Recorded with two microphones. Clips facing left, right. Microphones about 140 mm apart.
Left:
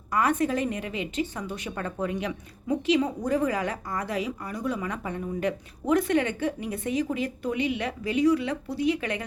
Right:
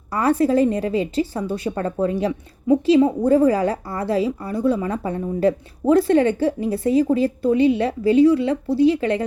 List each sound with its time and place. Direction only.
0.1 s a woman's voice: 30° right (ahead or behind)